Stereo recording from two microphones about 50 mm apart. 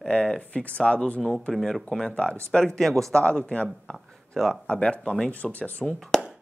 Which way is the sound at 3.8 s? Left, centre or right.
Centre.